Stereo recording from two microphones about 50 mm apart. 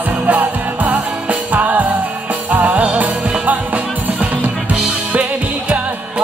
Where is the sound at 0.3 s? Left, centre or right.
Right.